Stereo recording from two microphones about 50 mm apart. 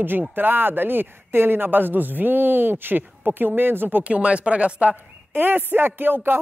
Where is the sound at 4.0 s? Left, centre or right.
Right.